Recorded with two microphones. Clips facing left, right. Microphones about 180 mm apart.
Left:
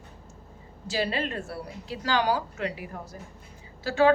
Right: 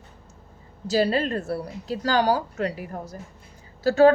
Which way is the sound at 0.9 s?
40° right (ahead or behind).